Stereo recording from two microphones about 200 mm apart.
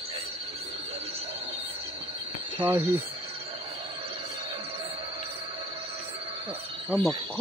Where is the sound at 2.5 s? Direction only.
20° right (ahead or behind).